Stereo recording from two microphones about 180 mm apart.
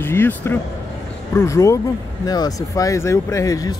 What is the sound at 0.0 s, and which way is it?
Speech, 10° left (ahead or behind).